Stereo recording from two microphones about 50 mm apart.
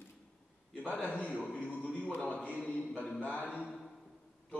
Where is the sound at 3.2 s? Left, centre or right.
Left.